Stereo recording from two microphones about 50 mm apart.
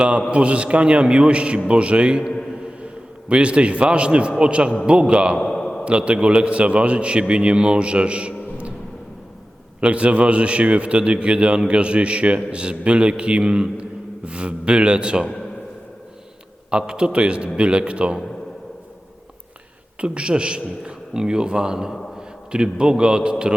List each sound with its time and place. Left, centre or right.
0.3 s a man's voice: right
5.4 s a sound: centre
5.8 s a man's voice: right
9.8 s a man's voice: right
16.7 s a man's voice: centre
20.0 s a man's voice: centre